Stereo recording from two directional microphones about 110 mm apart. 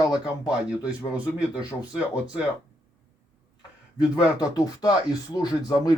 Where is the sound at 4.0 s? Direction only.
35° left (ahead or behind).